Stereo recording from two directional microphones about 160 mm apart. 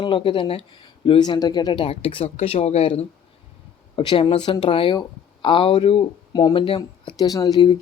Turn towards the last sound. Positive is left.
turn(degrees=25)  # may be behind; listen again after turning